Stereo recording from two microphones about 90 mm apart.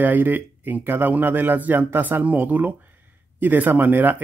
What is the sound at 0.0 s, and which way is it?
Speech, 20° right (ahead or behind).